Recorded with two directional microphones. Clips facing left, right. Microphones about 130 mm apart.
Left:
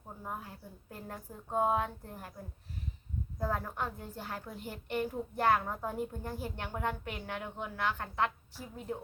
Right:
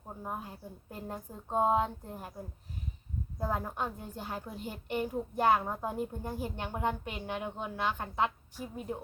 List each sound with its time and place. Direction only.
0.2 s a woman's voice: 20° right (ahead or behind)
3.3 s a woman's voice: 15° right (ahead or behind)